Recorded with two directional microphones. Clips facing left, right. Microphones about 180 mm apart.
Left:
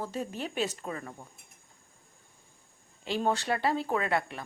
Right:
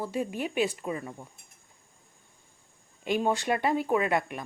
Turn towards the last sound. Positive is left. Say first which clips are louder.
# right 3 dB
turn(degrees=-15)  # may be behind; listen again after turning